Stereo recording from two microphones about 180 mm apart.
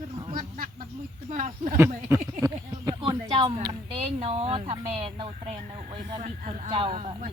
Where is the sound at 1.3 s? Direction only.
45° right (ahead or behind).